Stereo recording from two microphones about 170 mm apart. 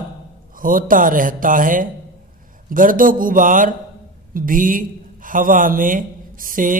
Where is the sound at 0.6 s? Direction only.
55° right (ahead or behind).